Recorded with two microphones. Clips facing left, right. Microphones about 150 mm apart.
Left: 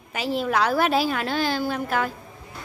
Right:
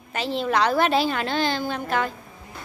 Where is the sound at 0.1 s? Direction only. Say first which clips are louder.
Even; 10° left (ahead or behind).